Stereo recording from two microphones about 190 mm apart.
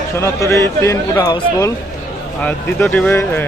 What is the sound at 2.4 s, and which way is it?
A man's voice, 5° left (ahead or behind).